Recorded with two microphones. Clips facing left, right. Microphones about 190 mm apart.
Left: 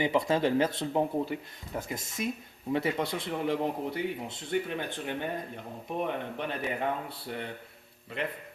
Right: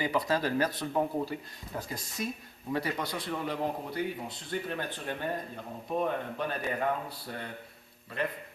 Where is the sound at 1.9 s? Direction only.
20° left (ahead or behind).